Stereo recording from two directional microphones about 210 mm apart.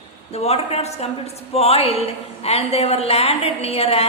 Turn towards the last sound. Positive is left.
turn(degrees=30)  # may be behind; listen again after turning